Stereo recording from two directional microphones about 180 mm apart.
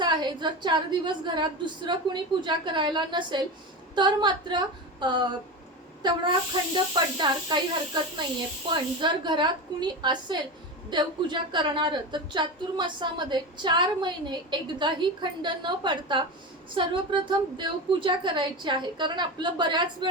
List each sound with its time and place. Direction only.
0.0 s a woman's voice: 25° right (ahead or behind)
8.7 s a woman's voice: 25° right (ahead or behind)